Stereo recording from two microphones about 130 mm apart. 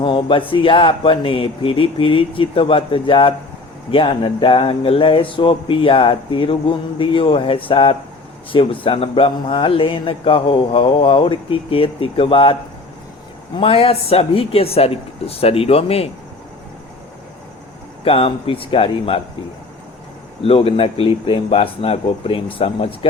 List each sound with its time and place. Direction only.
0.0 s speech: 40° left (ahead or behind)
13.6 s speech: 45° left (ahead or behind)
18.0 s speech: 45° left (ahead or behind)
20.4 s speech: 50° left (ahead or behind)